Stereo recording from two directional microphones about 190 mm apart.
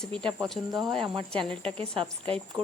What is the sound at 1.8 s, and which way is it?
Speech, 30° right (ahead or behind).